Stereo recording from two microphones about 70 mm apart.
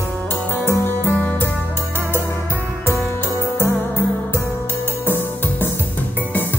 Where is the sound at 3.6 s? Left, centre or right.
Left.